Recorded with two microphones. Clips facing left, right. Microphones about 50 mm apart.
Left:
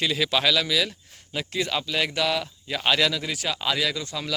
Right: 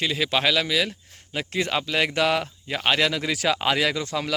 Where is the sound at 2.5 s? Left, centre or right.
Right.